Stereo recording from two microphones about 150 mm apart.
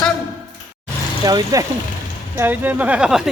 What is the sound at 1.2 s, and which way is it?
Speech, 25° right (ahead or behind).